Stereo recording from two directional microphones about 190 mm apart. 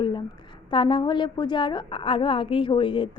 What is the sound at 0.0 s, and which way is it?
A woman's voice, 25° left (ahead or behind).